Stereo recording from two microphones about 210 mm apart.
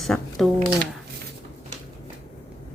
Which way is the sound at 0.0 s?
Centre (ahead or behind).